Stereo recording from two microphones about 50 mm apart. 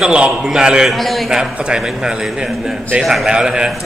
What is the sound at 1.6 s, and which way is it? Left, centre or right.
Speech, centre.